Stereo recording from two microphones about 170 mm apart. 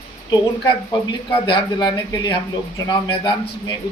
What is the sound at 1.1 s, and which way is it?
A man's voice, 25° left (ahead or behind).